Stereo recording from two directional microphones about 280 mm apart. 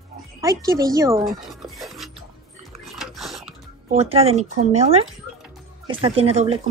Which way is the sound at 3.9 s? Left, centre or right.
Right.